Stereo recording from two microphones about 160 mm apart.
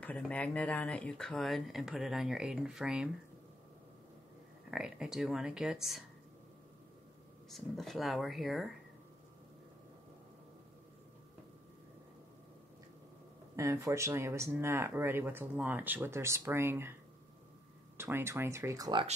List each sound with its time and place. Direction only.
0.0 s speech: 10° left (ahead or behind)
4.6 s speech: 5° right (ahead or behind)
7.4 s speech: centre (ahead or behind)
13.6 s speech: 20° right (ahead or behind)
17.9 s speech: 15° right (ahead or behind)